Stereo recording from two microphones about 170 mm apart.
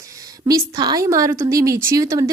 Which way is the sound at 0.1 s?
20° right (ahead or behind).